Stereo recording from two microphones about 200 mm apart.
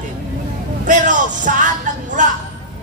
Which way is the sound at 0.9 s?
40° right (ahead or behind).